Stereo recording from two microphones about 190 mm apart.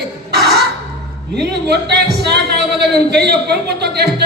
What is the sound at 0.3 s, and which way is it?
Music, 55° right (ahead or behind).